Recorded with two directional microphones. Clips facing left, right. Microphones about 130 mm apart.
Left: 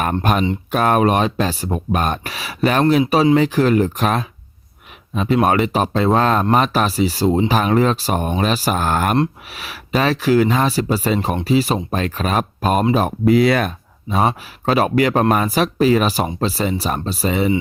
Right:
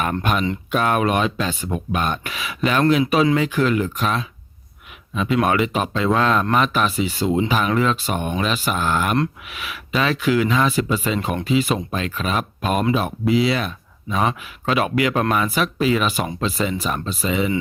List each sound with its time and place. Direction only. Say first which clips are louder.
0.2 s speech: left 3 dB; 40° left (ahead or behind)
3.0 s speech: left 3 dB; 30° left (ahead or behind)